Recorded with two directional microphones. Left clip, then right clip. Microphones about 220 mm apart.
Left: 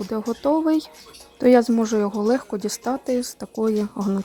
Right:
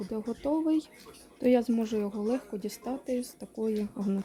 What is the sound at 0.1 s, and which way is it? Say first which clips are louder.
Speech: left 10 dB; 20° left (ahead or behind).